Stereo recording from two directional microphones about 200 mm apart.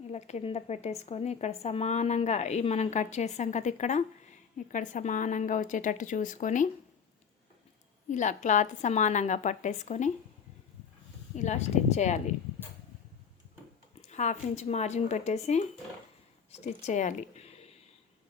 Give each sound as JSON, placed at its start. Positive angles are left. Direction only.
{"t": 0.1, "sound": "a woman's voice", "side_deg": 35}
{"t": 8.1, "sound": "a woman's voice", "side_deg": 35}
{"t": 11.3, "sound": "a woman's voice", "side_deg": 35}
{"t": 14.1, "sound": "a woman's voice", "side_deg": 35}